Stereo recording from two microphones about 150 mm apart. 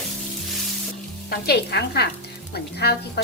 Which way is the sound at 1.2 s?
90° left.